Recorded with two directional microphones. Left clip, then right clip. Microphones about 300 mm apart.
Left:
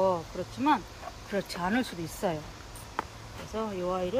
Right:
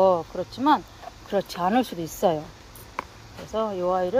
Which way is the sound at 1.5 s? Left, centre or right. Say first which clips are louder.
Right 6 dB; right.